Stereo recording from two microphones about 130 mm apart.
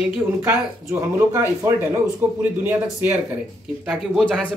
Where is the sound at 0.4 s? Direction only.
20° right (ahead or behind).